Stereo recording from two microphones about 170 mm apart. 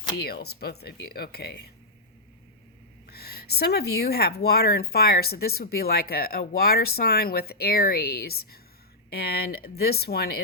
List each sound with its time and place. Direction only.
0.2 s speech: 70° left (ahead or behind)
3.1 s speech: 70° left (ahead or behind)